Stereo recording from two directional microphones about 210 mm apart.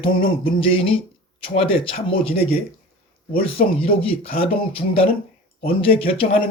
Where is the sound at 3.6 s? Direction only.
25° left (ahead or behind).